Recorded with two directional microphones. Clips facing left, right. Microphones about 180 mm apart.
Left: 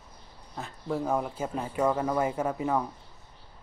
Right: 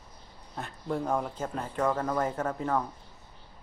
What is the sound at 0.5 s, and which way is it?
Speech, centre (ahead or behind).